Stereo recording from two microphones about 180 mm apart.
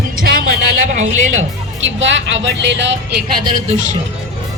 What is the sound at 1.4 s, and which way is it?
Speech, 90° right.